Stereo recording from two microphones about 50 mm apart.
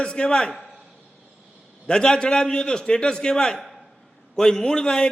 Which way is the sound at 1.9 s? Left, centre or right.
Centre.